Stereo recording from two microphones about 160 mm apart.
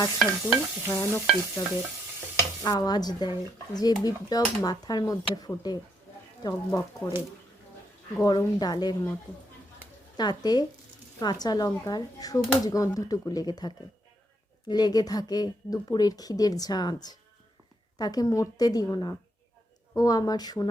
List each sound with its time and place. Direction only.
0.4 s stir: 15° left (ahead or behind)
2.6 s speech: 25° left (ahead or behind)
6.4 s stir: 15° left (ahead or behind)
8.2 s speech: 25° left (ahead or behind)
10.2 s speech: 25° left (ahead or behind)